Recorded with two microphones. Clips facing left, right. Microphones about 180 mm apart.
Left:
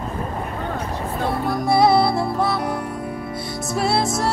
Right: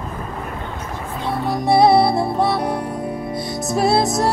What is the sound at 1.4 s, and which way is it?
Music, 20° right (ahead or behind).